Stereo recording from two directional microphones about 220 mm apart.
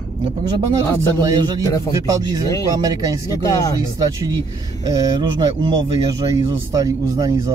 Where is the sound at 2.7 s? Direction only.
15° right (ahead or behind).